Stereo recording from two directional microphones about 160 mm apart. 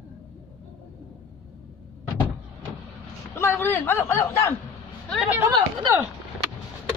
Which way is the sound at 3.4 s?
15° left (ahead or behind).